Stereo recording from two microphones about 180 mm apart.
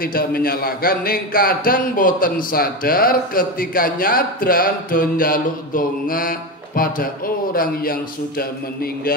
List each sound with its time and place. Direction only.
0.0 s a man's voice: 55° left (ahead or behind)